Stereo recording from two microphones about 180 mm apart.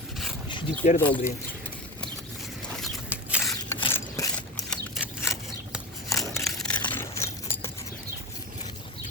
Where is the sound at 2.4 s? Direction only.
Centre (ahead or behind).